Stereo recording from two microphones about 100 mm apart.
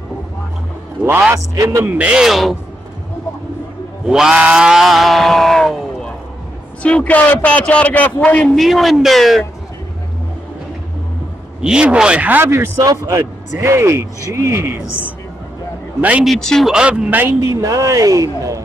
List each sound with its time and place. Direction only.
1.3 s speech: 30° right (ahead or behind)
1.9 s speech: 15° right (ahead or behind)
4.0 s a sound: 5° right (ahead or behind)
6.8 s a man's voice: 10° left (ahead or behind)
8.5 s speech: centre (ahead or behind)
11.6 s speech: 10° right (ahead or behind)
12.4 s speech: 25° right (ahead or behind)
12.8 s speech: 35° right (ahead or behind); by 16.3 s 15° right (ahead or behind)
16.3 s speech: 5° left (ahead or behind)
16.7 s speech: 10° right (ahead or behind)
17.4 s speech: 35° right (ahead or behind)